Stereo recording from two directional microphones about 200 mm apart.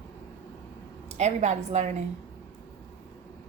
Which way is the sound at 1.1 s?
35° right (ahead or behind).